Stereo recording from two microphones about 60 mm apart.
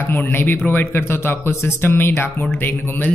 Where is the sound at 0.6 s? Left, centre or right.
Left.